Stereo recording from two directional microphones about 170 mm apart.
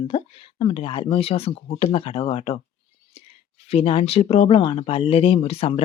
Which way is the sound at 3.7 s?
35° left (ahead or behind).